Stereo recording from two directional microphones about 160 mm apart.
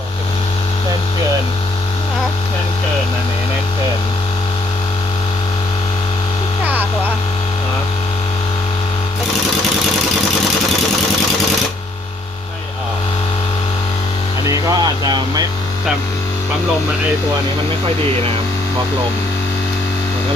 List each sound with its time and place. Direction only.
14.4 s vehicle: 20° right (ahead or behind)